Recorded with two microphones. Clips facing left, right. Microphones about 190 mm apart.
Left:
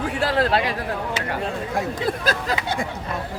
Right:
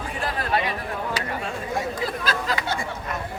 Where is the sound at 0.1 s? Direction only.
80° left.